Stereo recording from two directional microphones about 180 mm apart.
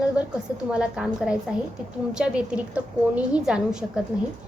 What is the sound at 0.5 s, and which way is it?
A woman's voice, 5° right (ahead or behind).